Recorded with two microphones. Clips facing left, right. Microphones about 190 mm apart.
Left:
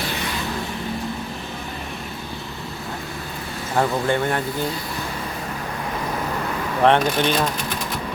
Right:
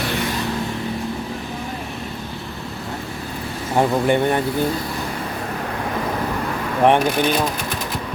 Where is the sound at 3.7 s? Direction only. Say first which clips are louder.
Right 3 dB; 15° right (ahead or behind).